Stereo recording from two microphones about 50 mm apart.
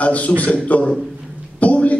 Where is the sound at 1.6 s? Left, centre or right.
Left.